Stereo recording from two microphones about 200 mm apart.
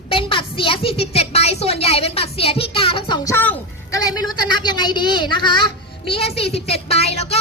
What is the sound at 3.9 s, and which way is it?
A woman's voice, 20° left (ahead or behind).